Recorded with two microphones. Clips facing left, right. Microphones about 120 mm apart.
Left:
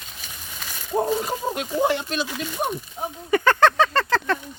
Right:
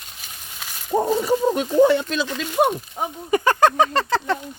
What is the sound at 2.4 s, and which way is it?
Speech, 80° right.